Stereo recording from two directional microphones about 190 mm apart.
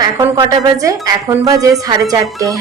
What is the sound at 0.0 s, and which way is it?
A woman's voice, 20° right (ahead or behind).